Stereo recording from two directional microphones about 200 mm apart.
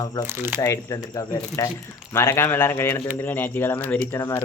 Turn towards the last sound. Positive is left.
turn(degrees=20)  # may be behind; listen again after turning